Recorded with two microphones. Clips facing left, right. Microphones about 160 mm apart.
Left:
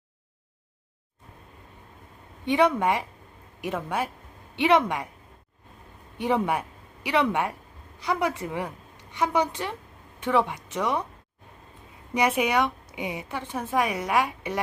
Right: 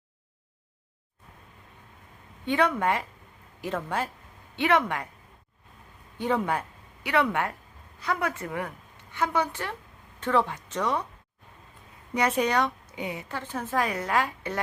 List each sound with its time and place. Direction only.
2.5 s a woman's voice: 20° left (ahead or behind)
6.1 s a woman's voice: 15° left (ahead or behind)
12.1 s a woman's voice: 10° left (ahead or behind)